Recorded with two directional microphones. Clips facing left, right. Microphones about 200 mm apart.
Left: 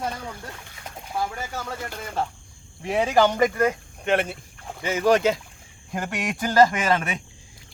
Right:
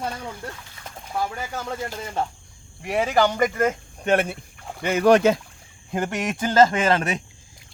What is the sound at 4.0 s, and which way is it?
Speech, 40° right (ahead or behind).